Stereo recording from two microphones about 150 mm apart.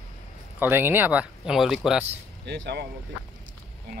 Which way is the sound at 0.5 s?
15° right (ahead or behind).